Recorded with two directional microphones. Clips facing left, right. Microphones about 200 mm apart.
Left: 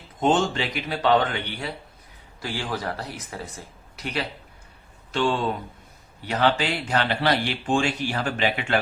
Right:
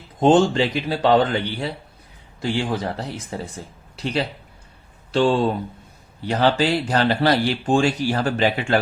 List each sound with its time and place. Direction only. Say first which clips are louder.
0.2 s speech: right 6 dB; 35° right (ahead or behind)